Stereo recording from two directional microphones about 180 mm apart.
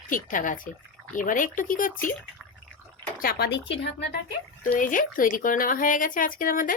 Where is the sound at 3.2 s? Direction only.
60° left (ahead or behind).